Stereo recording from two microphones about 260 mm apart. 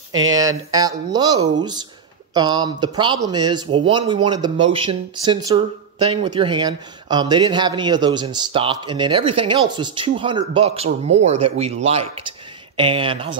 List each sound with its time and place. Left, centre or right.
0.1 s speech: right
0.7 s speech: centre